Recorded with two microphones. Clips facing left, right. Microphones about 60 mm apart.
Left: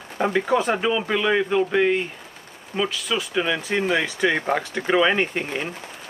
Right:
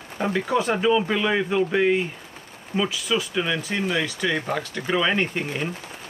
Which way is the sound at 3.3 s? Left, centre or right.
Centre.